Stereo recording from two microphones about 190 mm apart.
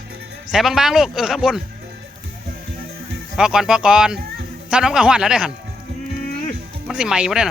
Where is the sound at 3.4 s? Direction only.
5° right (ahead or behind).